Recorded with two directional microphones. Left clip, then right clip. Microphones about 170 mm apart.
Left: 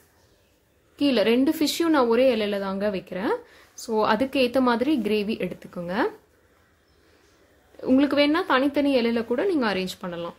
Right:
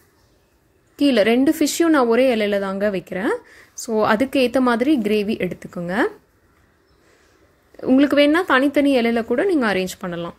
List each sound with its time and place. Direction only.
0.9 s a woman's voice: 25° right (ahead or behind)
7.8 s a woman's voice: 25° right (ahead or behind)